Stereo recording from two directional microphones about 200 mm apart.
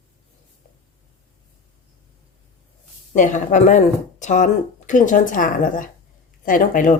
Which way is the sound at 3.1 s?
40° left (ahead or behind).